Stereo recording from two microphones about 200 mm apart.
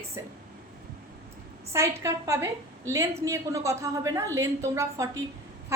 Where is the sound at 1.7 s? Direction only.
15° right (ahead or behind).